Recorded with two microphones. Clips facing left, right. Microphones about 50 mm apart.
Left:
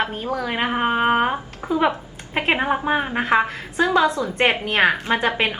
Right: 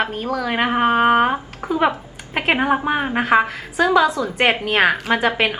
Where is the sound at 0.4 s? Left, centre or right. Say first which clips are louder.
Right 4 dB; right.